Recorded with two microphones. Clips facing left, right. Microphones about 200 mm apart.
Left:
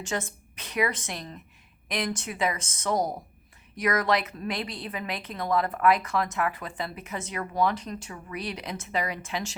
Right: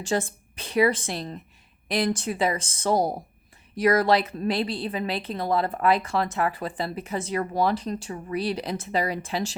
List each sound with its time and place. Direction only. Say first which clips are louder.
0.0 s a woman's voice: right 6 dB; 30° right (ahead or behind)